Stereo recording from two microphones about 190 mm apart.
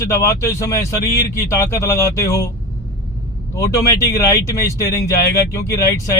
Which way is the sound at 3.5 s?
15° left (ahead or behind).